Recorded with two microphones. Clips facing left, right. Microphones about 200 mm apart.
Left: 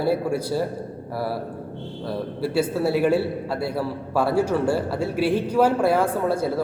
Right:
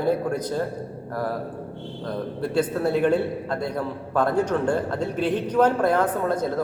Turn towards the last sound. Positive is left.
turn(degrees=10)  # may be behind; listen again after turning